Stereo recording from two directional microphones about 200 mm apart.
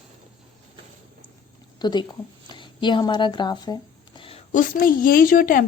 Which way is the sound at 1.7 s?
20° left (ahead or behind).